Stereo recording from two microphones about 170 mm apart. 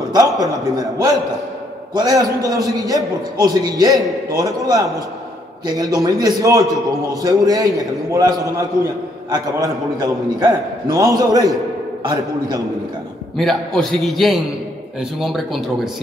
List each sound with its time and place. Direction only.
0.4 s a man's voice: 20° right (ahead or behind)
13.4 s a man's voice: centre (ahead or behind)